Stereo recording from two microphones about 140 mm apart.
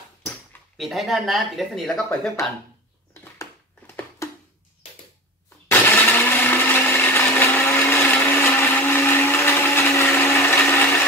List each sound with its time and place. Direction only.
0.7 s speech: centre (ahead or behind)
3.3 s a sound: 20° left (ahead or behind)
5.7 s blender: 15° left (ahead or behind)